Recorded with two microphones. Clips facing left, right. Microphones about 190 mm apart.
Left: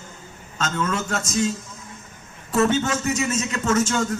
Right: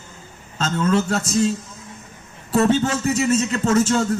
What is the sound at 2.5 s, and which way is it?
A man's voice, 35° right (ahead or behind).